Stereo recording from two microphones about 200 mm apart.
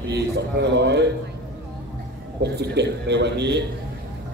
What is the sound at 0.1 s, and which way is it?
A man's voice, 60° right (ahead or behind).